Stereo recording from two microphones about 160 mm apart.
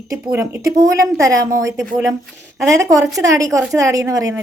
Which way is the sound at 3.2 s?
20° right (ahead or behind).